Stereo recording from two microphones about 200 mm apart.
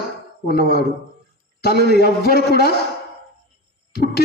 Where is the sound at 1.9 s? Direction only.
50° left (ahead or behind).